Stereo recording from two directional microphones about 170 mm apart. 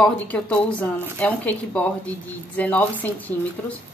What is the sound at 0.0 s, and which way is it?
Speech, 5° left (ahead or behind).